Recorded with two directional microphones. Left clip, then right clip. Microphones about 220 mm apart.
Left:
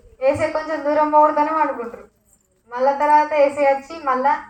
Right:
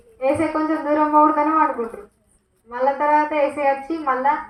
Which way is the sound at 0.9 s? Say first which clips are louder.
Left 2 dB; 50° left (ahead or behind).